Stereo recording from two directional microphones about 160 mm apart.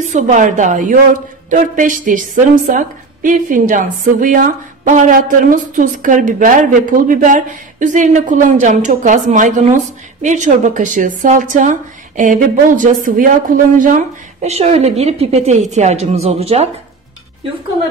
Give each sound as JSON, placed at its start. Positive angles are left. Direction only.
{"t": 0.0, "sound": "a woman's voice", "side_deg": -50}